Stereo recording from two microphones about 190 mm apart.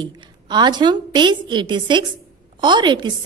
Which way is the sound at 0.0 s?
20° right (ahead or behind).